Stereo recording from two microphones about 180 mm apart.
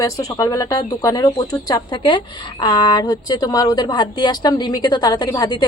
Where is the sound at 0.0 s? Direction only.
20° left (ahead or behind).